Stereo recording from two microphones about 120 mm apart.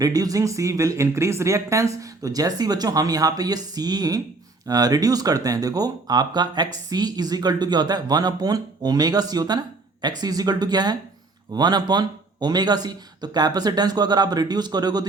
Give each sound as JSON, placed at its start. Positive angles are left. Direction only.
{"t": 0.0, "sound": "speech", "side_deg": -30}